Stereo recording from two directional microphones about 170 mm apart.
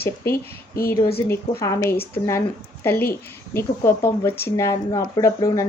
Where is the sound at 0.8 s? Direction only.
60° left (ahead or behind).